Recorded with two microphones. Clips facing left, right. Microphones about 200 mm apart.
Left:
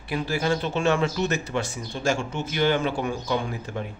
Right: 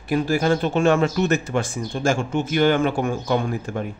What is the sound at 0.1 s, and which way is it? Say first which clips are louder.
Speech: right 6 dB; 50° right (ahead or behind).